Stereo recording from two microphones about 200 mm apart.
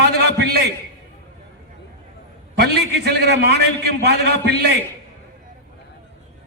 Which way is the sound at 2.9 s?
55° right (ahead or behind).